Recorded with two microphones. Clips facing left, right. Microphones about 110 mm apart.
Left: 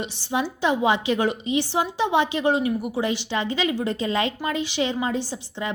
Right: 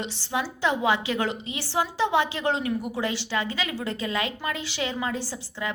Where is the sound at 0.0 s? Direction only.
15° left (ahead or behind).